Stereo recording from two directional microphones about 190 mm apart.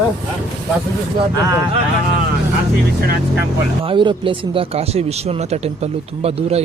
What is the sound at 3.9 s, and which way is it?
Speech, 25° right (ahead or behind).